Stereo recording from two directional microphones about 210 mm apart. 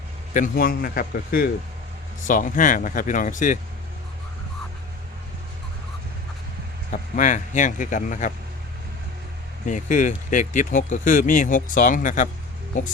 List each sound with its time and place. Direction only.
0.3 s speech: 40° left (ahead or behind)
6.9 s speech: 35° left (ahead or behind)
9.6 s speech: 35° left (ahead or behind)